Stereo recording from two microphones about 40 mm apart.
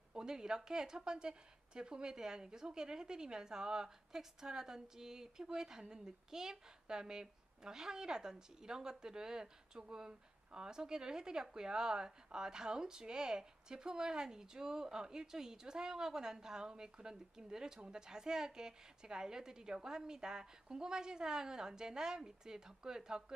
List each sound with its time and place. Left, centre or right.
0.1 s a woman's voice: centre